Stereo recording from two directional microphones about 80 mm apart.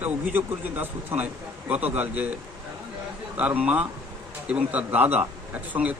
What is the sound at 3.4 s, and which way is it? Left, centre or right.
A man's voice, centre.